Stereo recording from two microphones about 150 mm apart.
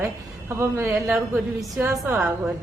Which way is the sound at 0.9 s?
5° right (ahead or behind).